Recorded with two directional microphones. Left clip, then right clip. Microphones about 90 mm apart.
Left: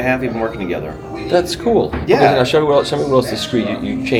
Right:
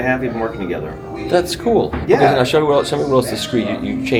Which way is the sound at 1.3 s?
5° right (ahead or behind).